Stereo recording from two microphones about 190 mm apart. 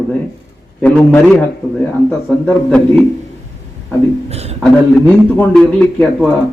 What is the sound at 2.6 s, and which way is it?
Speech, 10° left (ahead or behind).